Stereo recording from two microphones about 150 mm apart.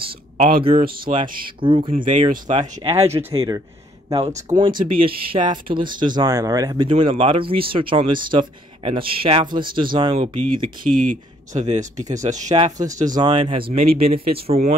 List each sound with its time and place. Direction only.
0.4 s speech: 70° right (ahead or behind)
1.6 s speech: 35° right (ahead or behind)
1.9 s speech: 60° right (ahead or behind)
2.8 s speech: 45° right (ahead or behind)
3.1 s speech: 15° right (ahead or behind)
4.5 s speech: 35° right (ahead or behind)
10.8 s speech: 65° right (ahead or behind)
13.1 s speech: 30° right (ahead or behind)